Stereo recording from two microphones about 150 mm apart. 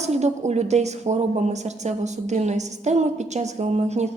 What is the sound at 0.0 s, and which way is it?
A woman's voice, 50° right (ahead or behind).